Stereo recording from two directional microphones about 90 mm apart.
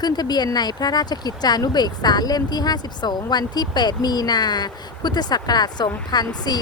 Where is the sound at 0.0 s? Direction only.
50° left (ahead or behind).